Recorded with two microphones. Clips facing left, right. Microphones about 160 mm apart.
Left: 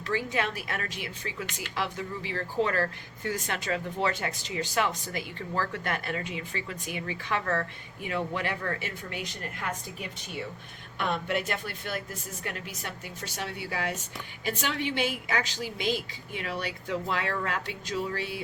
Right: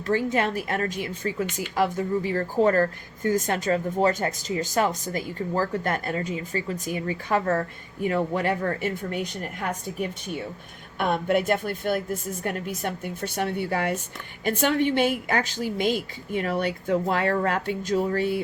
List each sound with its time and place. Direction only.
0.1 s speech: 45° right (ahead or behind)